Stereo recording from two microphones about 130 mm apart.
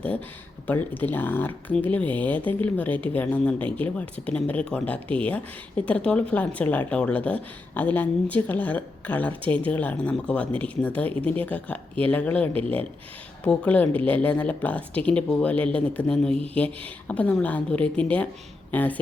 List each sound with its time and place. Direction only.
0.7 s speech: 15° left (ahead or behind)